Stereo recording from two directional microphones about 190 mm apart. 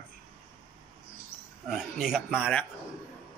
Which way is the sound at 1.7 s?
Centre (ahead or behind).